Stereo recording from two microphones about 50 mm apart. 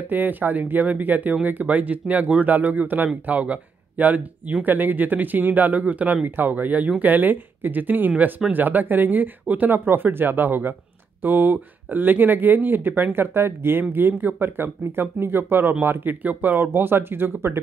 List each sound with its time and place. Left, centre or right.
0.1 s speech: right